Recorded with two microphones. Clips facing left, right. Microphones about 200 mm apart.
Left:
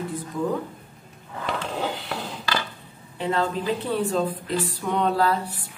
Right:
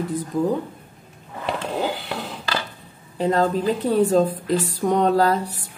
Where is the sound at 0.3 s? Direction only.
40° right (ahead or behind).